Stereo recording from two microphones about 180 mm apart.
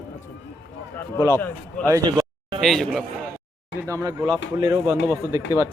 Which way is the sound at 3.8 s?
20° right (ahead or behind).